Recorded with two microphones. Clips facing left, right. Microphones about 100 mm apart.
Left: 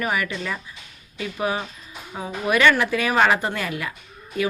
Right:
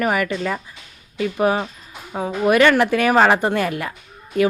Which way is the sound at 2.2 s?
45° right (ahead or behind).